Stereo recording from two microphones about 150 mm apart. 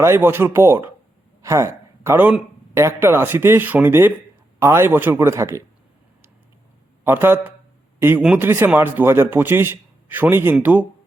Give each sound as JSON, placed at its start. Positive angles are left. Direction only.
{"t": 0.0, "sound": "a man's voice", "side_deg": -15}
{"t": 7.0, "sound": "a man's voice", "side_deg": -15}